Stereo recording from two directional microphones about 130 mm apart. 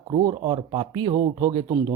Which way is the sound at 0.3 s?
35° right (ahead or behind).